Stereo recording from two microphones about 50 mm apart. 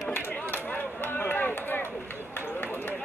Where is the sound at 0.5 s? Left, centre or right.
Left.